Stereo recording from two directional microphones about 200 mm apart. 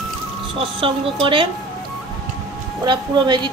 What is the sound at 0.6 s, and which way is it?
Speech, 25° right (ahead or behind).